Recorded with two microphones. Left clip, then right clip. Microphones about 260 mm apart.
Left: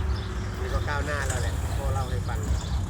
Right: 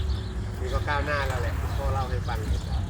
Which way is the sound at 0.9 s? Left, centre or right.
Centre.